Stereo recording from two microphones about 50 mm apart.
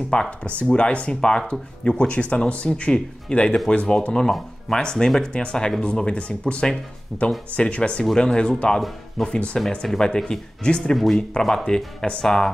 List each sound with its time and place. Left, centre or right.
0.1 s speech: centre